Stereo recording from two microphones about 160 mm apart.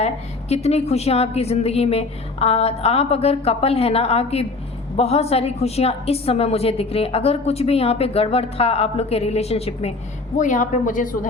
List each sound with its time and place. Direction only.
0.0 s a woman's voice: 40° left (ahead or behind)
10.3 s a woman's voice: 50° left (ahead or behind)